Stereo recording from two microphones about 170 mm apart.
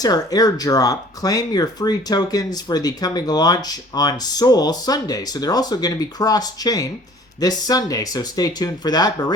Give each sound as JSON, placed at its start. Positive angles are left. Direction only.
{"t": 0.0, "sound": "speech", "side_deg": 20}